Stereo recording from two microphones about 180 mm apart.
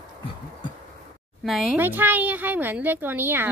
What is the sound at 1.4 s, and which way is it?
A child's voice, centre (ahead or behind).